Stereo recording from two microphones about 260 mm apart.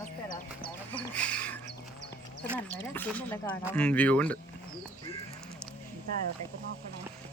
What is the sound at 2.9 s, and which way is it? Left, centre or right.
Speech, centre.